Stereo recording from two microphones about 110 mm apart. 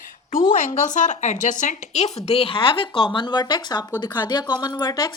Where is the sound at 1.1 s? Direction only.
90° left.